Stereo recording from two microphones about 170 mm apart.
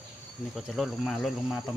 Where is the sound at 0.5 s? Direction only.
Centre (ahead or behind).